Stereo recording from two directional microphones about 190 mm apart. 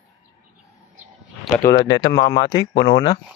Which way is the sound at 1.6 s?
20° left (ahead or behind).